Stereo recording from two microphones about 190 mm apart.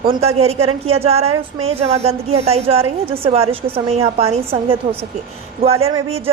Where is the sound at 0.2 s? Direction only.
30° right (ahead or behind).